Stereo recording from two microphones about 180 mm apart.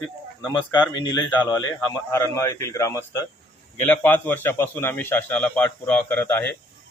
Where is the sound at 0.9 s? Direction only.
25° left (ahead or behind).